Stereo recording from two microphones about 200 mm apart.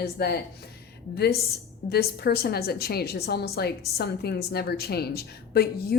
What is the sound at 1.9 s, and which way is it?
A woman's voice, 50° left (ahead or behind).